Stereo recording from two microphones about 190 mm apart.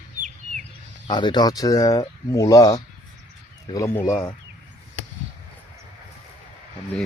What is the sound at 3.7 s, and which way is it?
Speech, 15° left (ahead or behind).